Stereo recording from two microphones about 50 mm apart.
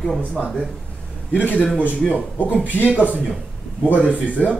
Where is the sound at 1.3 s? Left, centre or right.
Left.